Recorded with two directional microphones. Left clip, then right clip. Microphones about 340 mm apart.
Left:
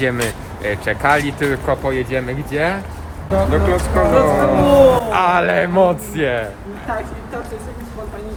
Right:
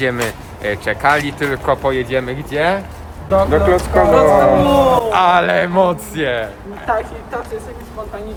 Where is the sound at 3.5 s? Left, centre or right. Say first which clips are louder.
Right 4 dB; right.